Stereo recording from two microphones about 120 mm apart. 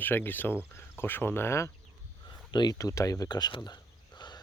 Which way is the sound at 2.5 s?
35° left (ahead or behind).